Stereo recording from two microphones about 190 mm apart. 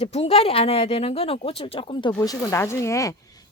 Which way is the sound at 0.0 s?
35° left (ahead or behind).